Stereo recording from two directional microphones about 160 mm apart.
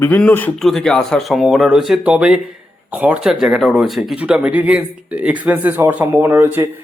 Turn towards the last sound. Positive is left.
turn(degrees=-15)  # may be behind; listen again after turning